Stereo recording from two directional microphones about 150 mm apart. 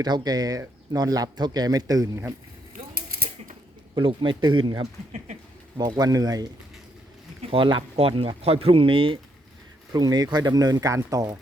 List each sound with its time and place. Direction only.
0.0 s speech: 25° right (ahead or behind)
2.9 s typewriter: 85° right
3.9 s speech: 30° right (ahead or behind)
7.5 s speech: 35° right (ahead or behind)